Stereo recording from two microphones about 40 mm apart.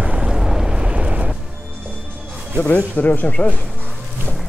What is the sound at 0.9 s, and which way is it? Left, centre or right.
Artillery fire, right.